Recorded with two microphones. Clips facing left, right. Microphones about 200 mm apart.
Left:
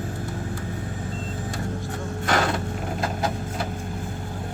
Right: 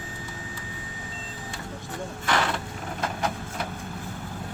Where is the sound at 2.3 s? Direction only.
40° left (ahead or behind).